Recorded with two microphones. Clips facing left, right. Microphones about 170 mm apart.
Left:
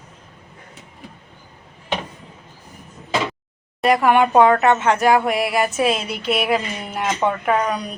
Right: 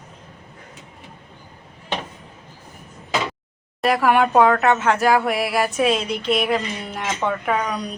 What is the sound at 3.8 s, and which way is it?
Speech, centre (ahead or behind).